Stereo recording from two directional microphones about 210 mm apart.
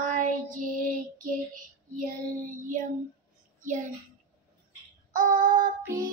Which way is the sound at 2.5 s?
40° right (ahead or behind).